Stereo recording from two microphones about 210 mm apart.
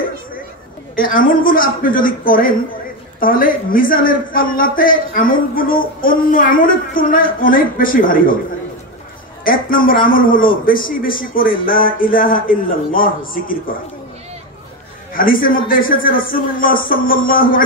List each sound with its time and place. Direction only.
0.9 s a man's voice: 40° left (ahead or behind)
9.4 s a man's voice: 40° left (ahead or behind)
15.1 s a man's voice: 40° left (ahead or behind)